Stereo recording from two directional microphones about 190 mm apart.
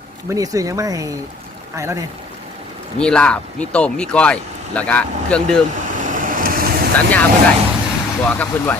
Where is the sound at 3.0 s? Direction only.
5° left (ahead or behind).